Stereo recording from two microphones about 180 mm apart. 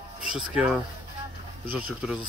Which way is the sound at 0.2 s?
5° right (ahead or behind).